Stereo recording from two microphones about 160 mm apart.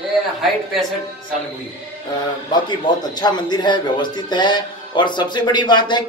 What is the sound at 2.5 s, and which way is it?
A man's voice, 25° left (ahead or behind).